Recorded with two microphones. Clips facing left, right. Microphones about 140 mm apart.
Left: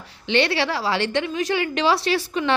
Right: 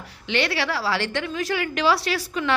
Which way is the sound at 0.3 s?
25° left (ahead or behind).